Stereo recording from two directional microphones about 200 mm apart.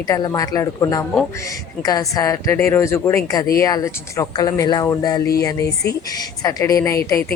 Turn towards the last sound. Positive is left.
turn(degrees=15)  # may be behind; listen again after turning